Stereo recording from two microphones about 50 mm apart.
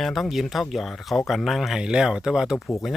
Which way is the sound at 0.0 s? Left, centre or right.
Centre.